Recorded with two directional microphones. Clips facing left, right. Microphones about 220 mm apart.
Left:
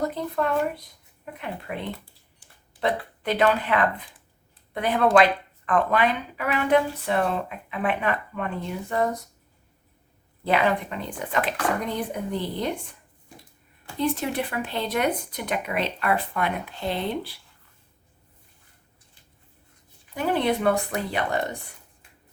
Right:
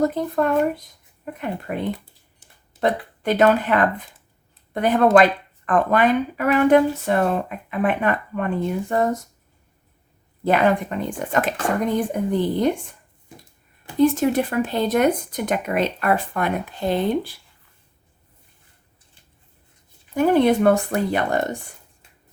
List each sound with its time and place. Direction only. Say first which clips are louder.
0.0 s speech: right 6 dB; 45° right (ahead or behind)
3.2 s speech: right 5 dB; 45° right (ahead or behind)
10.4 s speech: right 5 dB; 45° right (ahead or behind)
14.0 s speech: right 8 dB; 45° right (ahead or behind)
20.1 s speech: right 8 dB; 45° right (ahead or behind)